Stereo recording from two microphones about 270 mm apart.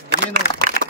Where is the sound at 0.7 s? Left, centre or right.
Left.